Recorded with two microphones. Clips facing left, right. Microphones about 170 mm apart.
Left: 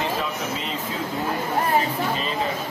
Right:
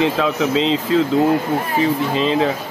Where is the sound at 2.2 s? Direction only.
90° right.